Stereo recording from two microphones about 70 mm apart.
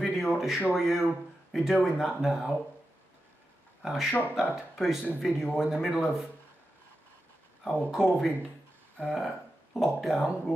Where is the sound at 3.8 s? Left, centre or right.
Centre.